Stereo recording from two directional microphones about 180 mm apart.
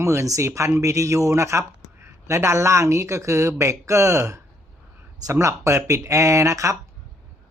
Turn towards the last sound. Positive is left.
turn(degrees=-20)  # may be behind; listen again after turning